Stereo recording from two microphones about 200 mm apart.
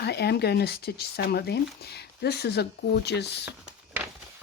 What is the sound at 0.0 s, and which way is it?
Speech, 55° left (ahead or behind).